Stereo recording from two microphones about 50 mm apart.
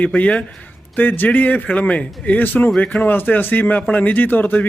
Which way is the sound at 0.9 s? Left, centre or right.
Left.